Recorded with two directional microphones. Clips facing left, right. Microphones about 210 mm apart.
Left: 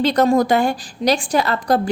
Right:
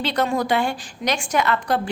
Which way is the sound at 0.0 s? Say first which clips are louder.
Left 7 dB; 40° left (ahead or behind).